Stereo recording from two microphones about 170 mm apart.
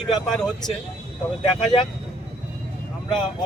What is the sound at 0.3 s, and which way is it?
Speech, centre (ahead or behind).